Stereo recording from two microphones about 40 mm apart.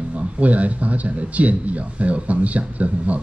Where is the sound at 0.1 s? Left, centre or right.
Right.